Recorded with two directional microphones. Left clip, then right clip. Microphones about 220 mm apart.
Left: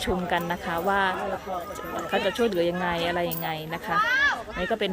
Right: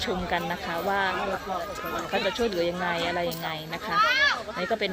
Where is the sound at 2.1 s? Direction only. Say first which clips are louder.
Left 3 dB; 15° left (ahead or behind).